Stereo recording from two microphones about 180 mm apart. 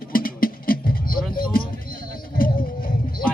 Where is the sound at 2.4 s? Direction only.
55° left (ahead or behind).